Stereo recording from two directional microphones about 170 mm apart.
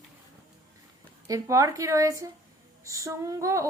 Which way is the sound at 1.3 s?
20° right (ahead or behind).